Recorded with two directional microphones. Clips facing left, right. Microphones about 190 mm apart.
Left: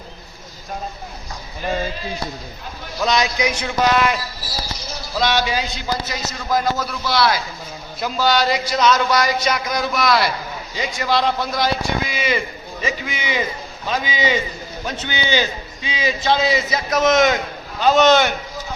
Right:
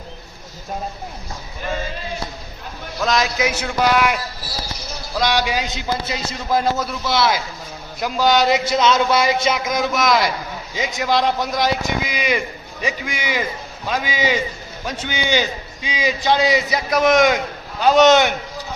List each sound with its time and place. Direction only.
3.0 s a man's voice: centre (ahead or behind); by 18.3 s 15° right (ahead or behind)